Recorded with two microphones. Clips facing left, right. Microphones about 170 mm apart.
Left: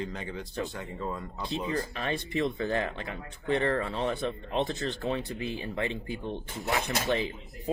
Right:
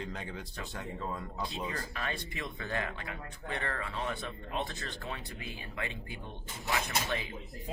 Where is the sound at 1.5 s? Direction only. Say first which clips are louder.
Left 7 dB; 25° left (ahead or behind).